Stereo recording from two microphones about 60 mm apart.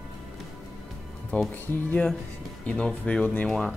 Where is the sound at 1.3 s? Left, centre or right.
Left.